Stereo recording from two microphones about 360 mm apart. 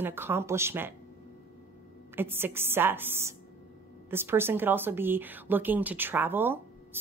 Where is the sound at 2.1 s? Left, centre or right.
Centre.